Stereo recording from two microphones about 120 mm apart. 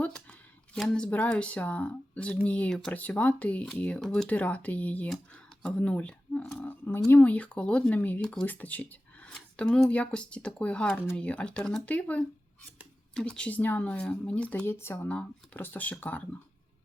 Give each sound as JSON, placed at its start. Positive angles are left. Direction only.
{"t": 0.0, "sound": "speech", "side_deg": 10}
{"t": 6.6, "sound": "a sound", "side_deg": 15}
{"t": 7.1, "sound": "speech", "side_deg": 15}